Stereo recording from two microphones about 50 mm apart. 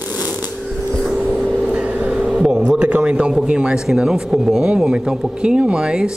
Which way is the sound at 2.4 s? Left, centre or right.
Centre.